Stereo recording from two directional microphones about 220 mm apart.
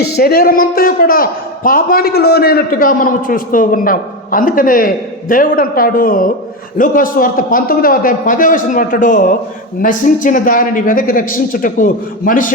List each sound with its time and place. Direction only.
0.2 s a woman's voice: 45° left (ahead or behind)